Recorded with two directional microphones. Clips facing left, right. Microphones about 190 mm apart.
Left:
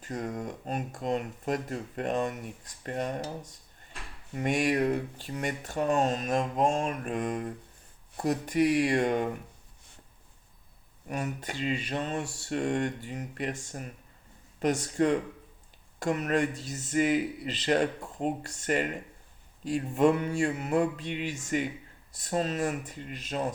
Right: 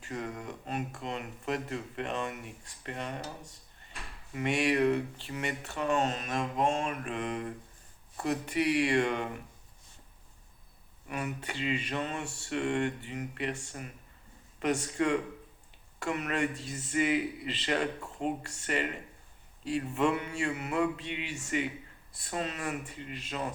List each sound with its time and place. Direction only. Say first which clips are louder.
0.0 s speech: left 4 dB; 45° left (ahead or behind)
4.4 s speech: left 1 dB; 45° left (ahead or behind)
11.1 s speech: left 2 dB; 40° left (ahead or behind)